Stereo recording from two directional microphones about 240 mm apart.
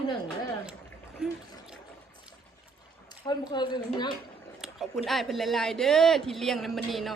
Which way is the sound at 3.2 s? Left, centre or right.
Centre.